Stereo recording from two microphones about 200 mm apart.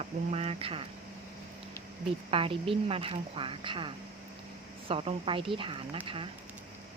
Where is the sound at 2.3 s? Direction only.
30° right (ahead or behind).